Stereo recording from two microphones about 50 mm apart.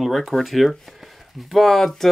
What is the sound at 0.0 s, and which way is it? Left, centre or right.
Speech, centre.